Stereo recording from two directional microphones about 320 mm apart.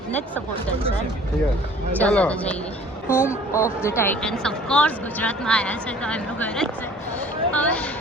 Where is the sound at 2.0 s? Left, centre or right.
Centre.